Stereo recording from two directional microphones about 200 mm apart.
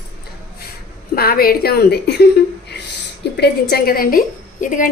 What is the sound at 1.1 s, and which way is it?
A woman's voice, 50° left (ahead or behind).